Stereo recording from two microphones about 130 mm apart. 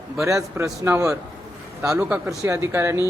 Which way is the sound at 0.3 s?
25° right (ahead or behind).